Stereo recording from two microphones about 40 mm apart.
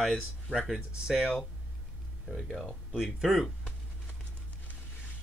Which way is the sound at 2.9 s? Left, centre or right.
Centre.